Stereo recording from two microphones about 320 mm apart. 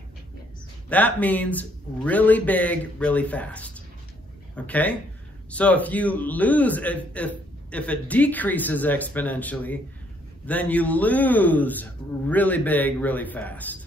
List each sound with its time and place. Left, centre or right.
0.8 s a man's voice: centre